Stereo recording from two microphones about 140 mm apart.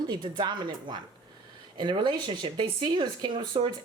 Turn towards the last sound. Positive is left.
turn(degrees=-35)  # may be behind; listen again after turning